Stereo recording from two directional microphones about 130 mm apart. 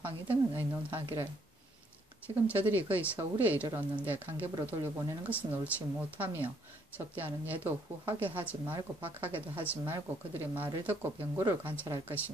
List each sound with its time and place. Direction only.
0.0 s speech: 15° right (ahead or behind)
2.2 s speech: 10° right (ahead or behind)